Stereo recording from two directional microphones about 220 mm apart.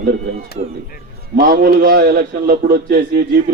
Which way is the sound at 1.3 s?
45° right (ahead or behind).